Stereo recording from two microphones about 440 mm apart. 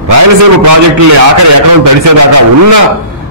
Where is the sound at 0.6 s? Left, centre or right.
Right.